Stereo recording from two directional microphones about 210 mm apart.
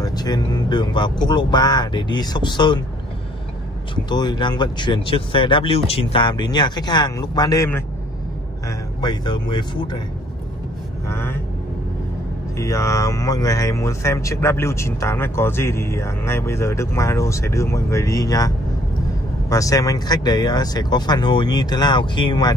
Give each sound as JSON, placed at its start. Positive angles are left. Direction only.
{"t": 0.0, "sound": "speech", "side_deg": 20}
{"t": 3.9, "sound": "speech", "side_deg": 20}
{"t": 11.1, "sound": "speech", "side_deg": 10}
{"t": 12.5, "sound": "speech", "side_deg": 15}
{"t": 19.5, "sound": "speech", "side_deg": 15}